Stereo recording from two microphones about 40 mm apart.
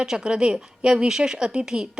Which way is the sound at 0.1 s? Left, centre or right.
Right.